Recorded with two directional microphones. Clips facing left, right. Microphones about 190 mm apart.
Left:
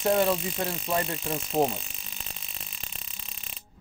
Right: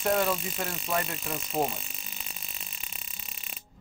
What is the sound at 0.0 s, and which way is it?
Speech, 20° left (ahead or behind).